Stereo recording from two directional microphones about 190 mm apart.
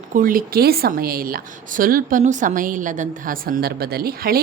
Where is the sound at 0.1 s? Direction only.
45° right (ahead or behind).